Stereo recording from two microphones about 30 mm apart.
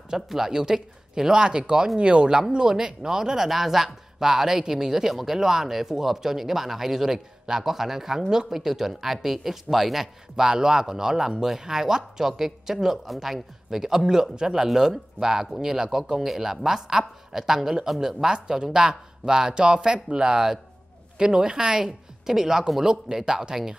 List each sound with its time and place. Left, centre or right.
0.1 s speech: centre; by 2.4 s right
2.7 s speech: right
3.4 s speech: centre
10.3 s speech: centre
21.8 s speech: centre